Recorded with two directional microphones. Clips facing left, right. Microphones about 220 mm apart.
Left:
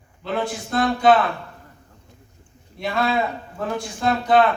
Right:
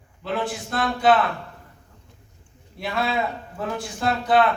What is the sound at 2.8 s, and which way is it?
A man's voice, 5° right (ahead or behind).